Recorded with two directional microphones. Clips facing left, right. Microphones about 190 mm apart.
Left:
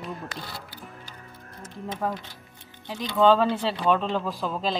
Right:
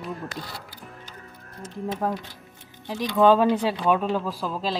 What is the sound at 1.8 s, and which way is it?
Speech, 15° right (ahead or behind).